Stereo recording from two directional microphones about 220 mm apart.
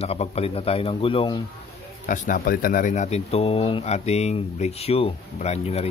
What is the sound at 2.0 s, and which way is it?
Speech, 40° left (ahead or behind).